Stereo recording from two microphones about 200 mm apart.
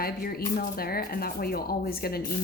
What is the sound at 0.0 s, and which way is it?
Speech, 50° left (ahead or behind).